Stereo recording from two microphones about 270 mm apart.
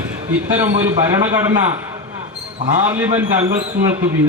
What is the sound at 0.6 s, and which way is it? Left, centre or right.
A man's voice, centre.